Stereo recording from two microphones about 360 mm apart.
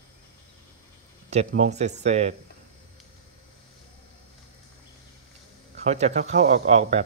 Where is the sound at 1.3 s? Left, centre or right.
Centre.